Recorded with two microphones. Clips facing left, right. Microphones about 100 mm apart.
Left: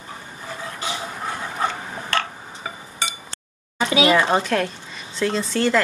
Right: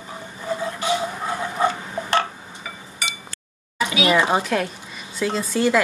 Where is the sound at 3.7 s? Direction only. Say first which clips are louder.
Left 3 dB; 30° left (ahead or behind).